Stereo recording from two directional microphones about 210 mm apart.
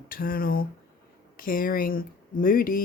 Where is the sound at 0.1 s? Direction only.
45° left (ahead or behind).